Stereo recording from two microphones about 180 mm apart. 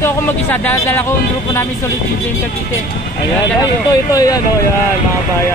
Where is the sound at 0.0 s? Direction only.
10° left (ahead or behind).